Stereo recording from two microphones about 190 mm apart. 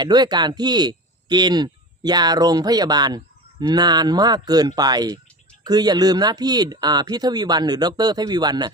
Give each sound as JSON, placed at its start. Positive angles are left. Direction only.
{"t": 0.0, "sound": "speech", "side_deg": -20}